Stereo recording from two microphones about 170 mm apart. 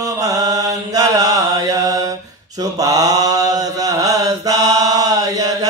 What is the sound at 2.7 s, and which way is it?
Mantra, 20° right (ahead or behind).